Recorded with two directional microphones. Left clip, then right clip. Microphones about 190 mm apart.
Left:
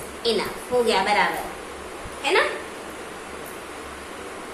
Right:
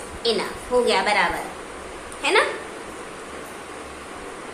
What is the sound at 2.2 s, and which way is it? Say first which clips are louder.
Speech: right 2 dB; 25° right (ahead or behind).